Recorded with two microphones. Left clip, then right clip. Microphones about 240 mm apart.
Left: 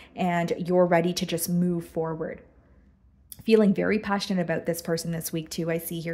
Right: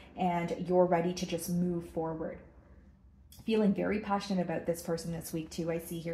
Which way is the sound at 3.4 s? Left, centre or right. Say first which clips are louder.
Left 9 dB; left.